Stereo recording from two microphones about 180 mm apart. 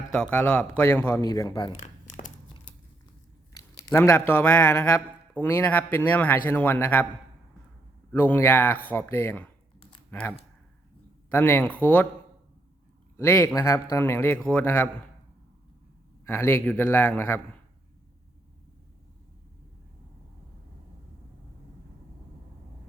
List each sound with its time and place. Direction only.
0.1 s speech: 5° left (ahead or behind); by 1.7 s 20° left (ahead or behind)
1.8 s crumpling: 40° left (ahead or behind)
3.5 s speech: 20° left (ahead or behind)
8.1 s speech: 10° left (ahead or behind)
13.1 s speech: 15° left (ahead or behind)
16.2 s speech: 15° left (ahead or behind)